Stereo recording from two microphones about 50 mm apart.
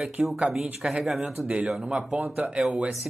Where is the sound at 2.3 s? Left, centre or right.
Right.